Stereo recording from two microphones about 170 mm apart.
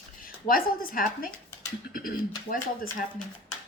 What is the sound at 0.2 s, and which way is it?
A woman's voice, 55° left (ahead or behind).